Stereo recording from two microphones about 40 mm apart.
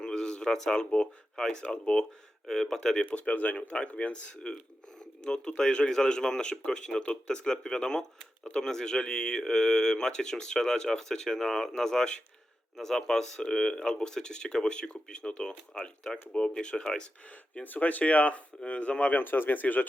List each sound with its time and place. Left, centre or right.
0.0 s a sound: centre
0.8 s speech: left
2.5 s speech: centre
3.0 s speech: left
17.6 s speech: left
19.2 s speech: left